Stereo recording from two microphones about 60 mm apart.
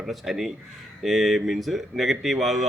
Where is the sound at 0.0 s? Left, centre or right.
Centre.